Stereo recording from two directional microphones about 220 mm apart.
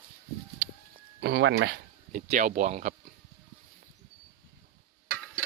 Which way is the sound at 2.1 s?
35° right (ahead or behind).